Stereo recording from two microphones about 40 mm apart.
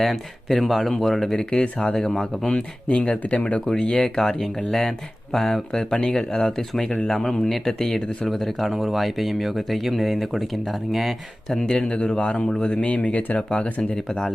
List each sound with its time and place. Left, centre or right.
0.0 s speech: centre
1.6 s speech: left
2.0 s speech: centre
2.5 s speech: left
3.7 s speech: centre
5.7 s speech: centre
11.5 s speech: centre
12.4 s speech: centre
12.6 s speech: left
13.9 s speech: centre